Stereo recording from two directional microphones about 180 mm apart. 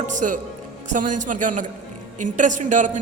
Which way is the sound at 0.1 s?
45° right (ahead or behind).